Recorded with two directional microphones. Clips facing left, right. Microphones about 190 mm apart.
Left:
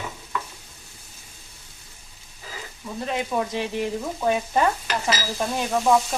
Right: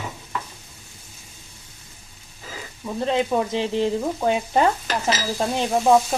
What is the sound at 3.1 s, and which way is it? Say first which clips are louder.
Stir: right 4 dB; 25° right (ahead or behind).